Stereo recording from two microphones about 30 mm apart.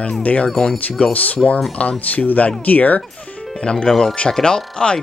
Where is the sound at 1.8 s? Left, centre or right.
Left.